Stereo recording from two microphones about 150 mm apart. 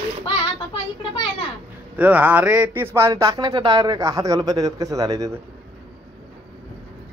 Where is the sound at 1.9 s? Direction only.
10° right (ahead or behind).